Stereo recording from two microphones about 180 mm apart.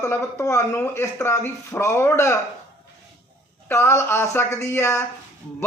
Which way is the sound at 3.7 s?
15° left (ahead or behind).